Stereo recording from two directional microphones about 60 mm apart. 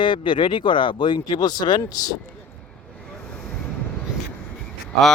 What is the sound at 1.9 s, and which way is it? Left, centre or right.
Speech, left.